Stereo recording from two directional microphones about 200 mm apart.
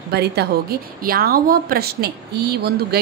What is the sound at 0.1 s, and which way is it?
A woman's voice, 55° right (ahead or behind).